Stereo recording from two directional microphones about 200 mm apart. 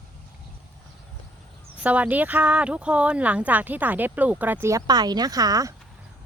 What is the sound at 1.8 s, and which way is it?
A woman's voice, 5° right (ahead or behind).